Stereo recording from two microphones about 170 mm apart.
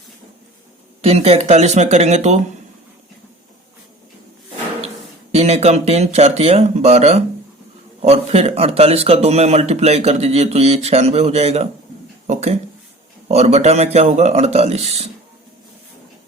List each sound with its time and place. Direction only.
1.0 s speech: 35° right (ahead or behind)
5.3 s speech: 40° right (ahead or behind)